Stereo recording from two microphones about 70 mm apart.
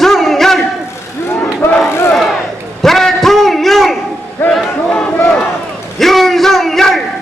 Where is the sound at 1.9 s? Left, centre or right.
Left.